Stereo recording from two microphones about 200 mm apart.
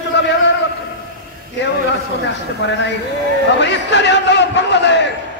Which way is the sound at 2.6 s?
65° left (ahead or behind).